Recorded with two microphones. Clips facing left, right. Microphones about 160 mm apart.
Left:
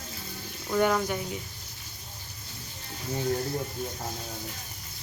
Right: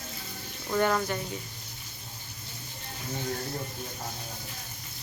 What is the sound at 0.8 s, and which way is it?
Speech, 10° left (ahead or behind).